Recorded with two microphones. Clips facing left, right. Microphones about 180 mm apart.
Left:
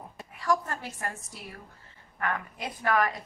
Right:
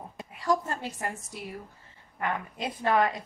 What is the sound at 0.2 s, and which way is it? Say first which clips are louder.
A woman's voice: right 1 dB; 20° right (ahead or behind).